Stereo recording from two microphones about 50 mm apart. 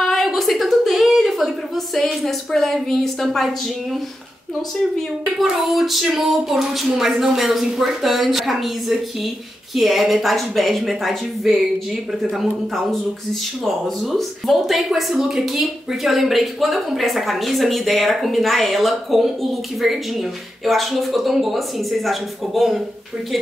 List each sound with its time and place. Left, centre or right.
0.0 s a sound: centre
2.0 s speech: centre
5.4 s speech: centre